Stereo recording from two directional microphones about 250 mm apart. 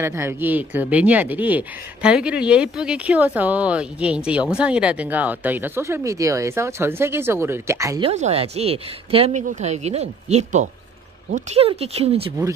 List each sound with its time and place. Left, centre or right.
0.0 s speech: centre
8.1 s speech: right
12.3 s speech: centre